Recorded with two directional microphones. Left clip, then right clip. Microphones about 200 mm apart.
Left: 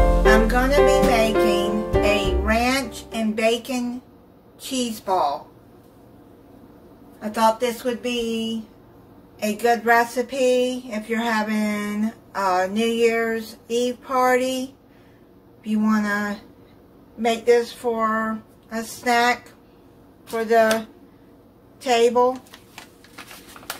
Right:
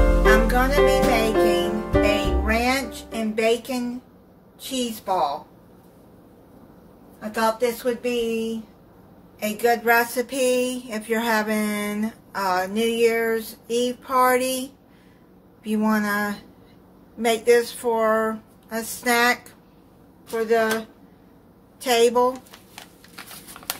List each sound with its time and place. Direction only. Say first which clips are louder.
0.0 s music: left 2 dB; centre (ahead or behind)
0.5 s music: left 1 dB; 15° right (ahead or behind)
0.7 s music: left 3 dB; centre (ahead or behind)
4.6 s a woman's voice: left 1 dB; 5° right (ahead or behind)
7.2 s a woman's voice: left 3 dB; 10° right (ahead or behind)
9.4 s a sound: left 1 dB; 15° right (ahead or behind); by 16.3 s 30° right (ahead or behind)
17.2 s speech: even; 35° right (ahead or behind)
20.2 s a woman's voice: left 3 dB; 5° right (ahead or behind)
21.8 s speech: left 1 dB; 35° right (ahead or behind)